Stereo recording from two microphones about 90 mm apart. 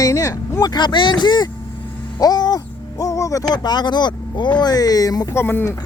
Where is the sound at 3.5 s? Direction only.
50° left (ahead or behind).